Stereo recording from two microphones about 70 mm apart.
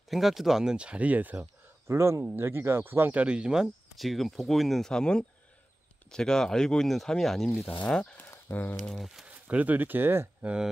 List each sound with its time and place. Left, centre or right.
0.1 s speech: centre; by 1.5 s right
1.9 s speech: right; by 3.7 s centre
4.0 s speech: centre
8.5 s speech: left
9.3 s speech: right
10.4 s speech: centre